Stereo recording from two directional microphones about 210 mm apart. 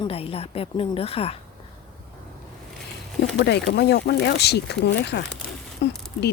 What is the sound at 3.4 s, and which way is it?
Speech, 50° left (ahead or behind).